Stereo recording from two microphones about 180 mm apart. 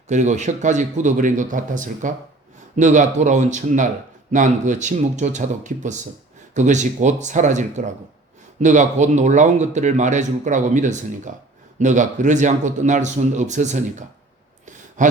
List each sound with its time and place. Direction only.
0.1 s speech: 40° right (ahead or behind)